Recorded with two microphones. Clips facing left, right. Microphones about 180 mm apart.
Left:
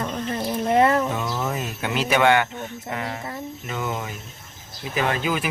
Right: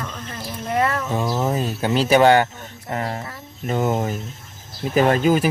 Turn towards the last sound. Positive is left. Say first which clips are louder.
# right 8 dB
turn(degrees=-40)  # may be behind; listen again after turning